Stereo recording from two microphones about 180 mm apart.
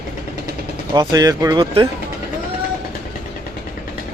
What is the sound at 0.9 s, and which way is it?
Speech, 20° right (ahead or behind).